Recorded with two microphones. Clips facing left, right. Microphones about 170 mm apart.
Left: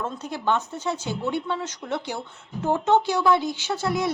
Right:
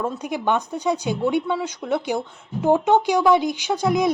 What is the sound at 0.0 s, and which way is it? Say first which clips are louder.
Speech: right 4 dB; 15° right (ahead or behind).